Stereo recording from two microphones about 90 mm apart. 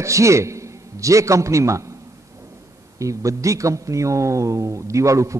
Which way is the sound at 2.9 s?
35° right (ahead or behind).